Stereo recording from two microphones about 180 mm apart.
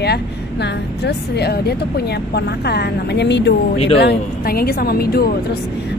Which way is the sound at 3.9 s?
60° left (ahead or behind).